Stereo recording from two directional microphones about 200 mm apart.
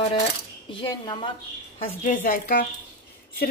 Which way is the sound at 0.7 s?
25° left (ahead or behind).